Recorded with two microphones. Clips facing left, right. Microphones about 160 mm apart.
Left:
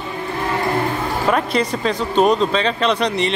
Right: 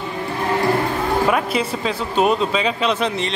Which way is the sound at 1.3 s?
5° right (ahead or behind).